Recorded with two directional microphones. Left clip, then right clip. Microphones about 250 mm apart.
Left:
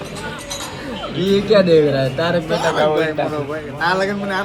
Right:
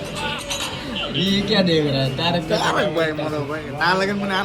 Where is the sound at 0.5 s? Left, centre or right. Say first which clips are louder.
Right 1 dB; centre.